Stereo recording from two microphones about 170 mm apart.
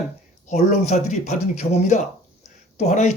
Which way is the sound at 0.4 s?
45° left (ahead or behind).